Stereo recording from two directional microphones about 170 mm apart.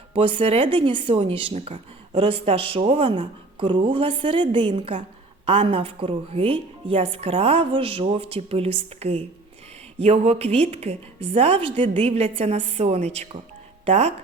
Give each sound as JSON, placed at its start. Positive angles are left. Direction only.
{"t": 0.1, "sound": "speech", "side_deg": -30}